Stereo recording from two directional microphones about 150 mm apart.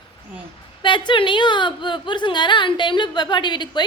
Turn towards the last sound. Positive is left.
turn(degrees=30)  # may be behind; listen again after turning